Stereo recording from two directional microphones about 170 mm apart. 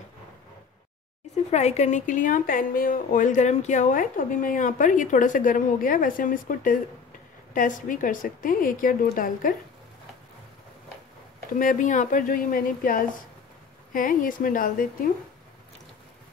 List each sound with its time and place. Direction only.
1.3 s speech: 40° left (ahead or behind)
11.5 s a woman's voice: 50° left (ahead or behind)